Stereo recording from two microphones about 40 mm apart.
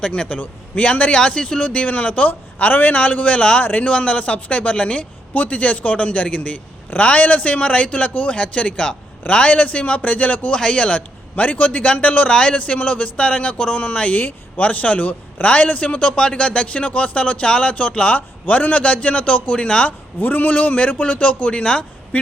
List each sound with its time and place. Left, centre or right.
0.3 s a man's voice: left
3.6 s a man's voice: left
10.5 s speech: left
11.3 s a man's voice: left
12.3 s a man's voice: left
20.1 s a man's voice: left